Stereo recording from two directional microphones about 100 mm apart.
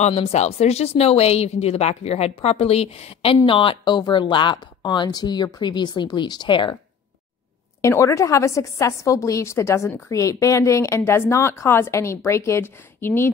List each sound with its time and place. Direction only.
0.0 s speech: 90° left; by 6.8 s 50° left (ahead or behind)
7.8 s a woman's voice: 30° left (ahead or behind)